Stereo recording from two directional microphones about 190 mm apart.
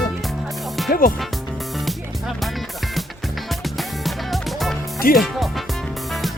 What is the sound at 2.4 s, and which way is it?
Music, centre (ahead or behind).